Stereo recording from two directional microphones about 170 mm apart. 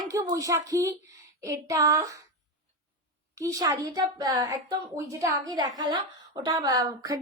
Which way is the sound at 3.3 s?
20° right (ahead or behind).